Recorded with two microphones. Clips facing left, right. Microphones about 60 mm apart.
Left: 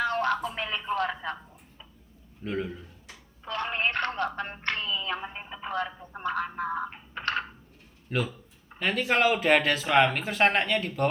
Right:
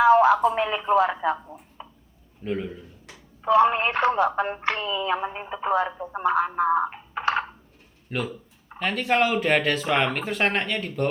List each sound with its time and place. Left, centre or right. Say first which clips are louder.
0.0 s a sound: right 11 dB; centre
0.6 s speech: right 8 dB; centre
1.8 s a sound: right 9 dB; right
2.4 s speech: right 3 dB; centre
5.4 s speech: right 10 dB; right
5.7 s speech: right 7 dB; centre
7.1 s computer keyboard: right 5 dB; centre
8.1 s speech: right 1 dB; centre